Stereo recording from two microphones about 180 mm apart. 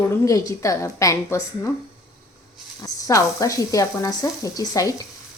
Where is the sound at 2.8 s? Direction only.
20° left (ahead or behind).